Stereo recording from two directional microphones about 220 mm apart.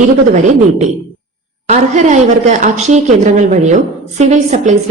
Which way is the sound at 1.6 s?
30° right (ahead or behind).